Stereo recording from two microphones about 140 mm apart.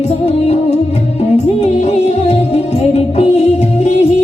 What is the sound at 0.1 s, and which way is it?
Music, 50° left (ahead or behind).